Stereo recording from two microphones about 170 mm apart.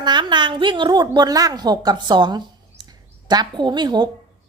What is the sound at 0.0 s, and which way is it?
A woman's voice, 25° right (ahead or behind).